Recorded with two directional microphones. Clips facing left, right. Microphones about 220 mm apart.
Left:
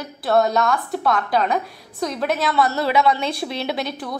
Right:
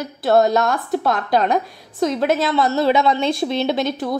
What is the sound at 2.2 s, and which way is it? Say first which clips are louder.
Speech: right 2 dB; centre (ahead or behind).